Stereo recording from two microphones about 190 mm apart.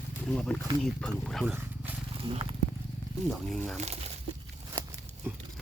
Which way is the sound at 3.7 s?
35° right (ahead or behind).